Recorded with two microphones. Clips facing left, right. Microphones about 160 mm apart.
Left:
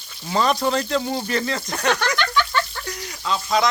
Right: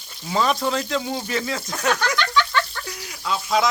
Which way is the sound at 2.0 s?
60° left (ahead or behind).